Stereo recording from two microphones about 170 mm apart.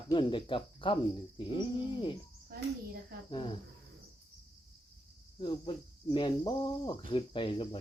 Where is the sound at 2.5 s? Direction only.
60° right (ahead or behind).